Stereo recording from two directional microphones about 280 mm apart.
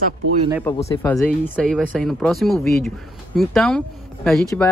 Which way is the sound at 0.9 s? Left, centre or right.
Centre.